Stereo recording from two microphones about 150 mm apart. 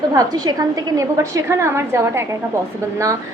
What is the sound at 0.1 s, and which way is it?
A woman's voice, 25° right (ahead or behind).